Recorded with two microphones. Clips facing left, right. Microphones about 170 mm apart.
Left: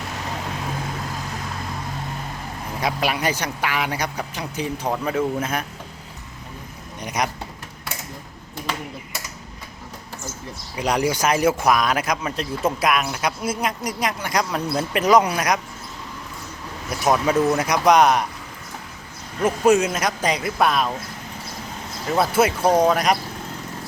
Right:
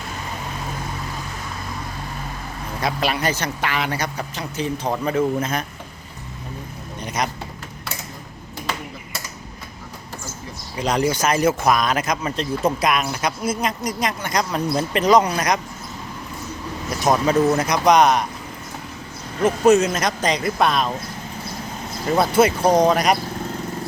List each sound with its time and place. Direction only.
2.8 s speech: 15° left (ahead or behind)
7.0 s vehicle: 15° left (ahead or behind)
10.8 s speech: 10° left (ahead or behind)
17.0 s speech: 10° left (ahead or behind)
19.5 s speech: 10° left (ahead or behind)
22.2 s speech: 5° left (ahead or behind)